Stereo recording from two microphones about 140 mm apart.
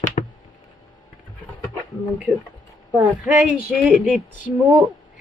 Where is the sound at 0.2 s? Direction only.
60° left (ahead or behind).